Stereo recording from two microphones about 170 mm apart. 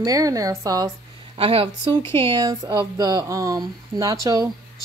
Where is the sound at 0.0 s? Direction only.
20° right (ahead or behind).